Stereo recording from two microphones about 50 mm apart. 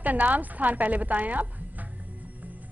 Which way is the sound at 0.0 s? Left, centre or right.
Right.